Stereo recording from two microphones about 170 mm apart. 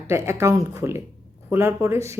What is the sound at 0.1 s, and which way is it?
Speech, 15° right (ahead or behind).